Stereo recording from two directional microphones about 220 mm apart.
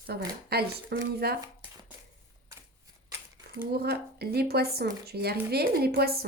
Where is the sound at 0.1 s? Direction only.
45° right (ahead or behind).